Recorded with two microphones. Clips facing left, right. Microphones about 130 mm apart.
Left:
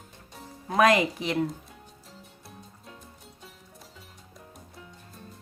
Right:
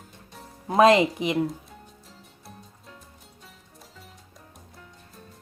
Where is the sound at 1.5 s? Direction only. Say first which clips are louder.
Right 2 dB; centre (ahead or behind).